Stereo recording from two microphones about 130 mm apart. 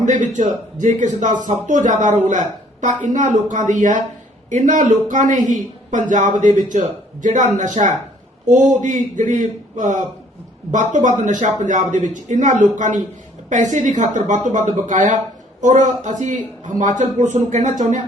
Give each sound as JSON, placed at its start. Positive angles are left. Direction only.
{"t": 0.0, "sound": "a man's voice", "side_deg": -70}